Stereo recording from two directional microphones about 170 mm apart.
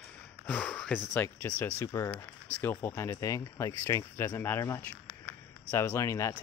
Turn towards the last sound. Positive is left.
turn(degrees=15)  # may be behind; listen again after turning